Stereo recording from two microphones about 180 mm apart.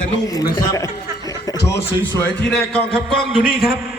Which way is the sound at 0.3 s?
20° left (ahead or behind).